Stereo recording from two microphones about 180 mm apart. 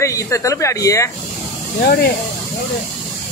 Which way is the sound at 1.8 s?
60° left (ahead or behind).